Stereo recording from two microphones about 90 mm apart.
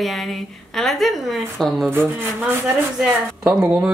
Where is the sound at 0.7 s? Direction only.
Centre (ahead or behind).